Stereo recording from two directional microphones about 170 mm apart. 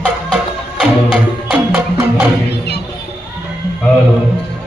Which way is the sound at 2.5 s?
75° left (ahead or behind).